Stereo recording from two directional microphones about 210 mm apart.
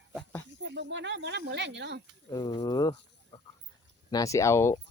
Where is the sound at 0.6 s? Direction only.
55° right (ahead or behind).